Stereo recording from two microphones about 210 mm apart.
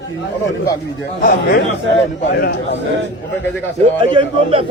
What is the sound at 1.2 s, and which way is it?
A man's voice, 50° left (ahead or behind).